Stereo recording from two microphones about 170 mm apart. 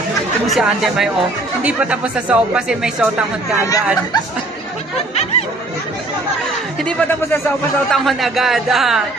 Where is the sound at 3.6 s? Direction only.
20° left (ahead or behind).